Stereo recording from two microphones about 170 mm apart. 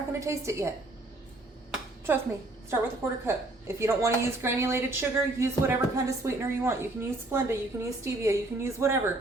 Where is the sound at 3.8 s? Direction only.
15° right (ahead or behind).